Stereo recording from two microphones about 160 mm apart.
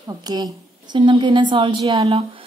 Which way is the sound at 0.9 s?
30° right (ahead or behind).